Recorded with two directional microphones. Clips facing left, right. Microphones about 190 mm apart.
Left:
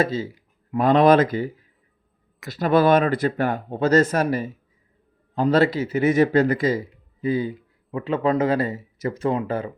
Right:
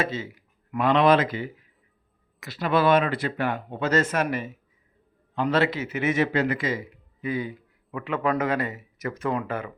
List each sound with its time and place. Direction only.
0.0 s a sound: 35° left (ahead or behind)
0.9 s a man's voice: 40° left (ahead or behind)
2.5 s a man's voice: 40° left (ahead or behind)